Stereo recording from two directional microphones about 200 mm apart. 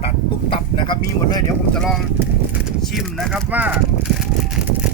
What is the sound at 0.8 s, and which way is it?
Speech, 20° left (ahead or behind).